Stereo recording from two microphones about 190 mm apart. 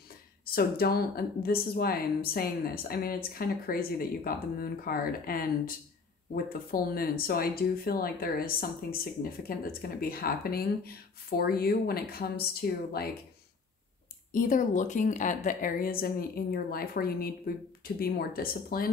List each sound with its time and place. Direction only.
0.5 s speech: 50° left (ahead or behind)
14.3 s speech: 45° left (ahead or behind)